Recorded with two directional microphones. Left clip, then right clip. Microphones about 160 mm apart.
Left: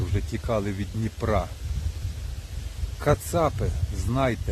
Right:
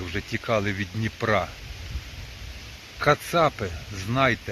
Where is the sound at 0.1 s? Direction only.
15° left (ahead or behind).